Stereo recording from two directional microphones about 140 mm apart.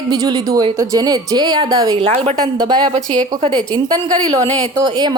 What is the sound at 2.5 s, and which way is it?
Speech, 30° right (ahead or behind).